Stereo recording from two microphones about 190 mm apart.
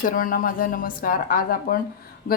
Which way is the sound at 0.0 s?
45° left (ahead or behind).